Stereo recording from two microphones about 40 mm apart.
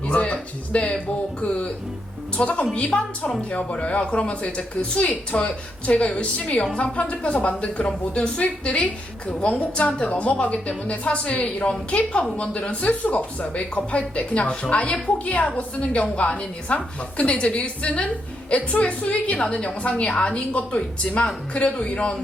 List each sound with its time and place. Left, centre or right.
0.1 s a woman's voice: left